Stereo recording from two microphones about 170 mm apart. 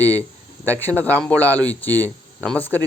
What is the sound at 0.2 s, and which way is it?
Speech, 10° left (ahead or behind).